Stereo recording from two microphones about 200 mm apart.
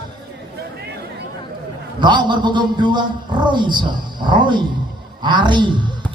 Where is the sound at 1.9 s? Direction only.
20° right (ahead or behind).